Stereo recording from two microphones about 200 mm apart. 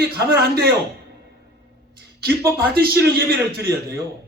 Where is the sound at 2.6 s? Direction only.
50° right (ahead or behind).